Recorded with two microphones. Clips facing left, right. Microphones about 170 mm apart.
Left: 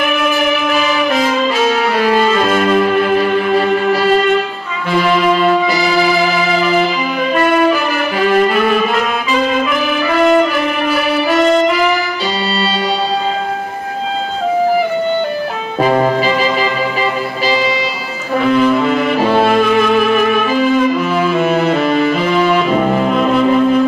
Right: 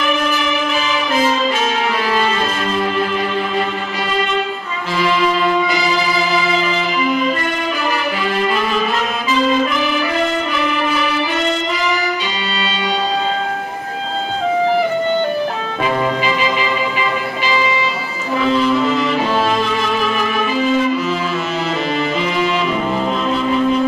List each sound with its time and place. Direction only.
0.0 s music: 55° left (ahead or behind)
2.0 s music: 45° left (ahead or behind)
4.9 s music: 55° left (ahead or behind)
8.3 s music: 55° left (ahead or behind)
9.3 s brass instrument: 60° left (ahead or behind)
15.8 s music: 40° left (ahead or behind)
18.4 s music: 55° left (ahead or behind)